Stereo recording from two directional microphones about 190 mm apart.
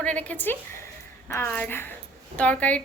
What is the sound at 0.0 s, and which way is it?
Speech, 5° left (ahead or behind).